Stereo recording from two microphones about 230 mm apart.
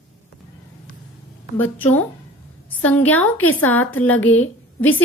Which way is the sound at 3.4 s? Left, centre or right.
Centre.